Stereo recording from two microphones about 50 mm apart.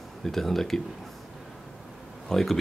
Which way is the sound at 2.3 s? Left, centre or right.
Centre.